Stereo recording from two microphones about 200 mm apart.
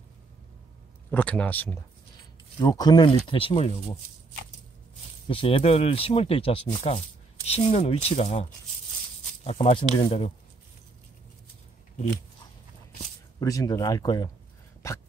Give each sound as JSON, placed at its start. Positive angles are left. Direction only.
{"t": 1.1, "sound": "speech", "side_deg": 10}
{"t": 2.6, "sound": "speech", "side_deg": 20}
{"t": 5.3, "sound": "speech", "side_deg": 25}
{"t": 13.4, "sound": "speech", "side_deg": 15}